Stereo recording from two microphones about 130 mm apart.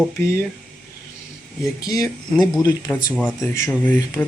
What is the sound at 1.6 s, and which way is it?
Speech, 30° left (ahead or behind).